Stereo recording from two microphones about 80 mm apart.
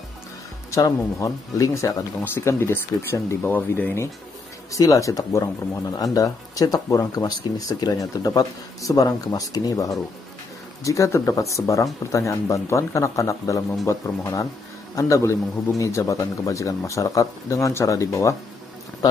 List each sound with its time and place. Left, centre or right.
0.7 s speech: left
2.2 s speech: left
4.7 s speech: left